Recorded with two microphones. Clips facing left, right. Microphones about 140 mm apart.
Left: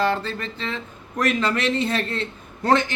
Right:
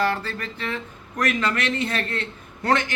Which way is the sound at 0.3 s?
25° left (ahead or behind).